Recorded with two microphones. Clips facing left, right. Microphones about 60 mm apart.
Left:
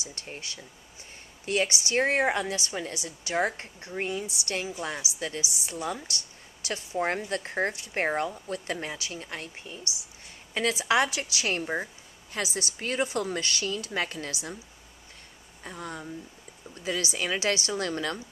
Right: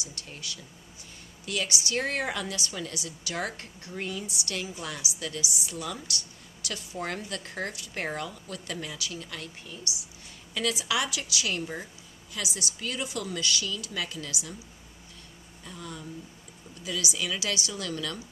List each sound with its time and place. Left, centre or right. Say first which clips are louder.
0.0 s a woman's voice: left 2 dB; left
15.6 s a woman's voice: left 3 dB; left